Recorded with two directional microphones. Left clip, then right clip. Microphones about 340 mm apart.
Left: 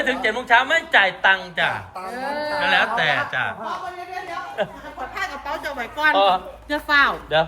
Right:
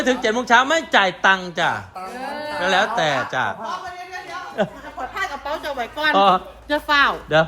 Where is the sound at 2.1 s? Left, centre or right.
Centre.